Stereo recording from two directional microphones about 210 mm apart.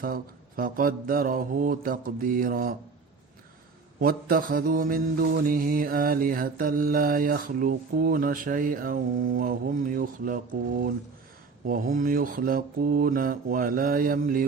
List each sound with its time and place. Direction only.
0.0 s mantra: 45° right (ahead or behind)
4.0 s mantra: 45° right (ahead or behind)
11.6 s mantra: 40° right (ahead or behind)